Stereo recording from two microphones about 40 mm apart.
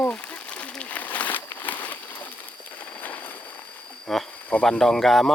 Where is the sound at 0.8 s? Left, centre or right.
Left.